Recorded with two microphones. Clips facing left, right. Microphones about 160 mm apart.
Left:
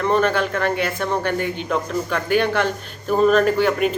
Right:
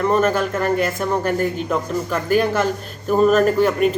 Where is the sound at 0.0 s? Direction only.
5° right (ahead or behind).